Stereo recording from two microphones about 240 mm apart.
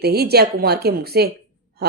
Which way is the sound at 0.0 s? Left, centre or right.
Right.